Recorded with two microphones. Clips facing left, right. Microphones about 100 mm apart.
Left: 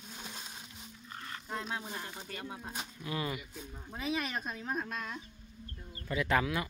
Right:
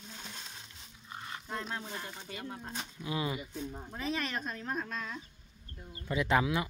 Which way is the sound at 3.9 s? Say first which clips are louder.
Left 2 dB; 5° left (ahead or behind).